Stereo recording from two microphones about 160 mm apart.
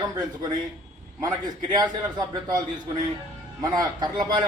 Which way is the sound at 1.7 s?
25° right (ahead or behind).